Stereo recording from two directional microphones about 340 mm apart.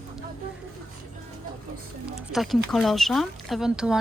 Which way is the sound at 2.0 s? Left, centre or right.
Centre.